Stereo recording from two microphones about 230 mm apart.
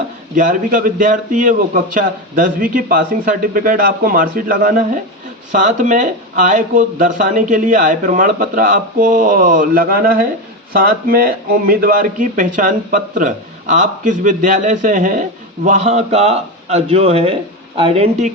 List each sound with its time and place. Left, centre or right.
0.3 s a man's voice: right